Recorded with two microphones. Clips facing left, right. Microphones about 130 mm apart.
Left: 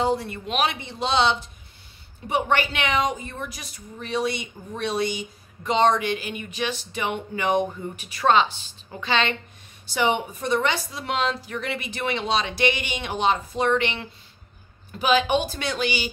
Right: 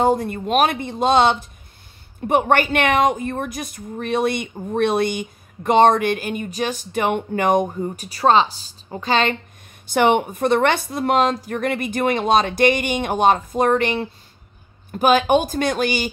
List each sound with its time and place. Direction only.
0.0 s a woman's voice: 50° right (ahead or behind)
9.8 s a woman's voice: 55° right (ahead or behind)